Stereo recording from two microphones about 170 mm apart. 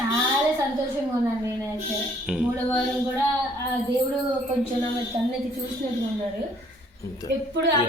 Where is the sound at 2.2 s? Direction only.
5° right (ahead or behind).